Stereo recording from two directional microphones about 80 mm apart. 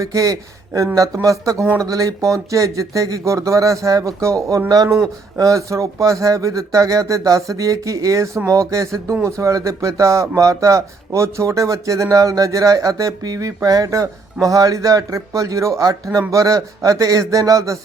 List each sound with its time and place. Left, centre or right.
0.0 s speech: right